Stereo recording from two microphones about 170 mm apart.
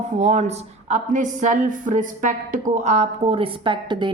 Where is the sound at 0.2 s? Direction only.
40° right (ahead or behind).